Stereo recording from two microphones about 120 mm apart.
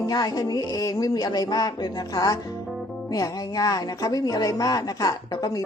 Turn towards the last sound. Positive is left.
turn(degrees=30)  # may be behind; listen again after turning